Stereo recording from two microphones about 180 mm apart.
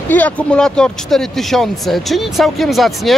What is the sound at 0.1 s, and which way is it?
Speech, 5° left (ahead or behind).